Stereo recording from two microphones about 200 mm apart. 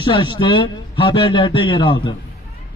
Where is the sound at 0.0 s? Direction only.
25° left (ahead or behind).